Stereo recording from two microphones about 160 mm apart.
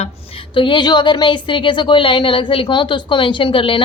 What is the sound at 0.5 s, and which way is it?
Speech, 30° left (ahead or behind).